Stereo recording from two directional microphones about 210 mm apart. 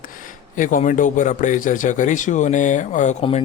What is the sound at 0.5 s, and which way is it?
Speech, 40° left (ahead or behind).